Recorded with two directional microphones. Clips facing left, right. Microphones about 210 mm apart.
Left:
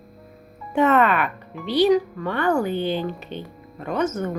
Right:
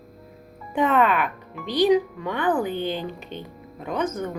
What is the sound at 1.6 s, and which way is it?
Speech, 50° right (ahead or behind).